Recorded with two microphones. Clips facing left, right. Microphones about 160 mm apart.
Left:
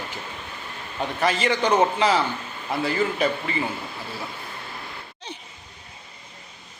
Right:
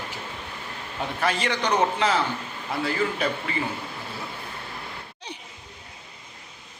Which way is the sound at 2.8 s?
Centre (ahead or behind).